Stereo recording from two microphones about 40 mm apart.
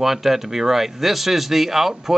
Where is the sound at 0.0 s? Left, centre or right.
Centre.